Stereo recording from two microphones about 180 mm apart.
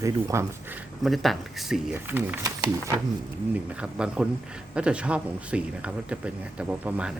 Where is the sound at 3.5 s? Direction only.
5° right (ahead or behind).